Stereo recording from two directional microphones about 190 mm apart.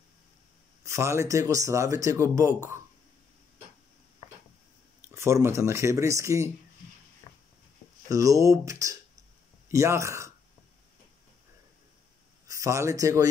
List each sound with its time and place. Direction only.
0.8 s speech: 15° right (ahead or behind)
5.0 s speech: 15° right (ahead or behind)
7.3 s a sound: 25° left (ahead or behind)
8.1 s speech: 15° right (ahead or behind)
12.4 s speech: 15° right (ahead or behind)